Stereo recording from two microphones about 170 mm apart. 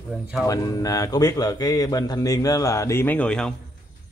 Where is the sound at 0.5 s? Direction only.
20° left (ahead or behind); by 3.5 s 5° left (ahead or behind).